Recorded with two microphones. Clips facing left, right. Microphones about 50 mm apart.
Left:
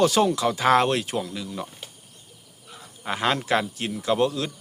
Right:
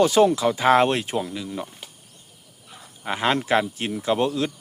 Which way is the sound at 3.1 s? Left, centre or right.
Centre.